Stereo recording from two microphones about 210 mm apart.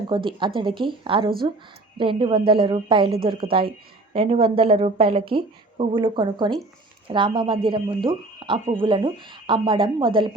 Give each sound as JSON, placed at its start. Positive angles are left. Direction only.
{"t": 0.1, "sound": "a woman's voice", "side_deg": -25}